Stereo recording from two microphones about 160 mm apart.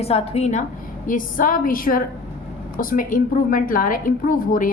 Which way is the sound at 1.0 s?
55° left (ahead or behind).